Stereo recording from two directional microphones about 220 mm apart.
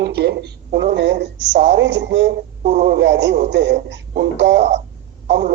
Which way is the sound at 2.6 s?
40° right (ahead or behind).